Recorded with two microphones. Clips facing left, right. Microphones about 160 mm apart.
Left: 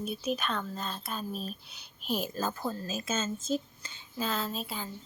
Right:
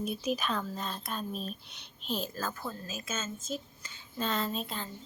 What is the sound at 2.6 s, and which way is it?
Speech, 30° left (ahead or behind).